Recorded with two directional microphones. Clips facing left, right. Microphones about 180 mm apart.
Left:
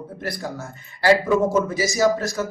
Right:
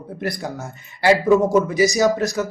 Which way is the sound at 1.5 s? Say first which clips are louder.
Right 5 dB; 15° right (ahead or behind).